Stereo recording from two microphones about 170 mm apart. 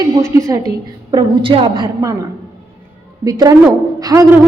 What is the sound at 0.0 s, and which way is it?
Speech, 20° right (ahead or behind).